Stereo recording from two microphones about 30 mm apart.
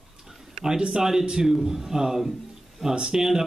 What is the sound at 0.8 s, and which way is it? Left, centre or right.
Speech, right.